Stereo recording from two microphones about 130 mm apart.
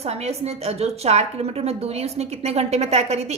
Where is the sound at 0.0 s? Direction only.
55° right (ahead or behind).